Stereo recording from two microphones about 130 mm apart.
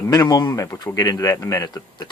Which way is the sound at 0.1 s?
25° left (ahead or behind).